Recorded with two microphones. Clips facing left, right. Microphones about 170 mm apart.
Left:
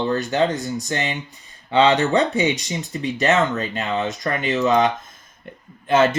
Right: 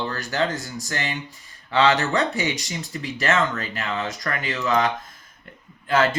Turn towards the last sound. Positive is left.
turn(degrees=20)  # may be behind; listen again after turning